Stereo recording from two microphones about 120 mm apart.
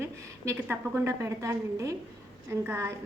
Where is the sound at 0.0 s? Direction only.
20° right (ahead or behind).